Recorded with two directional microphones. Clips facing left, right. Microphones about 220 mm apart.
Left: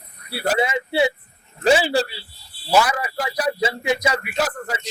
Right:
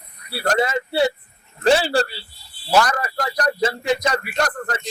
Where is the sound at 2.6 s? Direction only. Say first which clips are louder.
Even; 5° left (ahead or behind).